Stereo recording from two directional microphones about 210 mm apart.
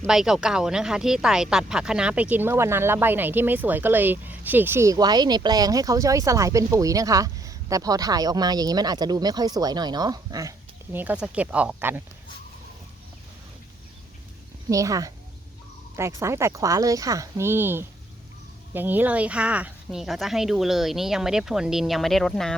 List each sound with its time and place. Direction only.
0.0 s speech: centre (ahead or behind)
14.7 s speech: 15° right (ahead or behind); by 22.5 s centre (ahead or behind)